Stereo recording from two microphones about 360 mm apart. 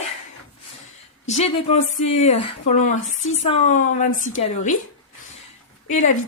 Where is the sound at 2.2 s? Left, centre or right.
Centre.